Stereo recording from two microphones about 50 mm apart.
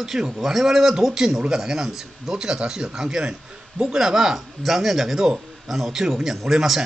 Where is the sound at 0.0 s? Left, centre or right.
Centre.